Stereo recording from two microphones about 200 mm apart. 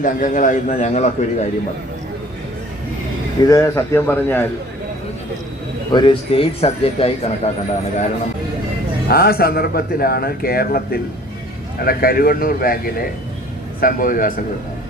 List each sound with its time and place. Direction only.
0.0 s a man's voice: 40° left (ahead or behind)
3.4 s a man's voice: 15° left (ahead or behind)
5.9 s a man's voice: 25° left (ahead or behind)
9.0 s a man's voice: 50° left (ahead or behind)